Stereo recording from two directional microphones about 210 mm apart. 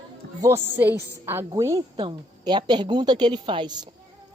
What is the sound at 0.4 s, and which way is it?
Speech, 10° right (ahead or behind).